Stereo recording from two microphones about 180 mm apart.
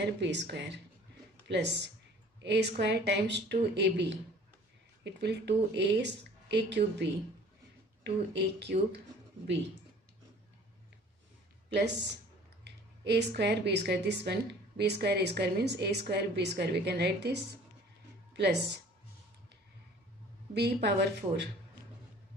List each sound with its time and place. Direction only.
0.0 s a woman's voice: 75° right (ahead or behind)
11.7 s a woman's voice: 70° right (ahead or behind)
18.3 s a sound: 70° right (ahead or behind)
20.5 s a woman's voice: 65° right (ahead or behind)